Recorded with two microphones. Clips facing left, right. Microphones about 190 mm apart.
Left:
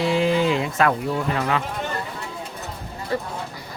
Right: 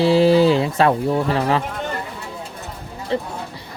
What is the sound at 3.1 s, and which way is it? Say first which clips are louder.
Speech: right 3 dB; 25° right (ahead or behind).